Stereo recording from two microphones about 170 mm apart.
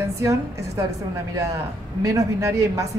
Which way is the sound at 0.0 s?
15° right (ahead or behind).